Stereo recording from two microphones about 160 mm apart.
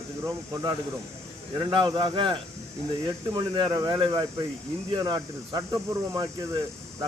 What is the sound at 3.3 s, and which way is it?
Speech, 30° right (ahead or behind).